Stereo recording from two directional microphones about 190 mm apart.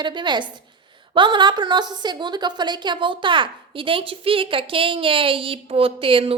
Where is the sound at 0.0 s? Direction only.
25° right (ahead or behind).